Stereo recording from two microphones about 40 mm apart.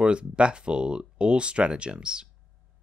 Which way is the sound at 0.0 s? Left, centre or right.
Right.